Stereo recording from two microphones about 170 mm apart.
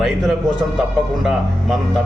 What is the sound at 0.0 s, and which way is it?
A man's voice, centre (ahead or behind).